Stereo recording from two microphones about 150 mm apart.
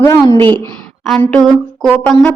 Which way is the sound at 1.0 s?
5° left (ahead or behind).